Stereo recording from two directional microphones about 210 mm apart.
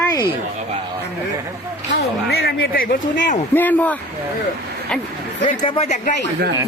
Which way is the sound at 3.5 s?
10° left (ahead or behind).